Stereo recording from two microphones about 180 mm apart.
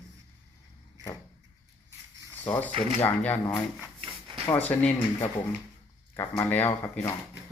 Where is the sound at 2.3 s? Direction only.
10° left (ahead or behind).